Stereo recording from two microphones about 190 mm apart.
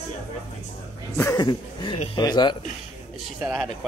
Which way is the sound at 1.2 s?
15° left (ahead or behind).